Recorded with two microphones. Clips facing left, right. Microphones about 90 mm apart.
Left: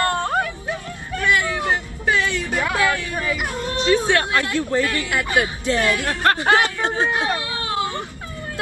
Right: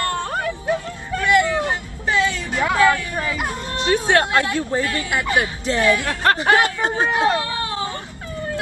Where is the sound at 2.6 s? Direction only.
25° right (ahead or behind).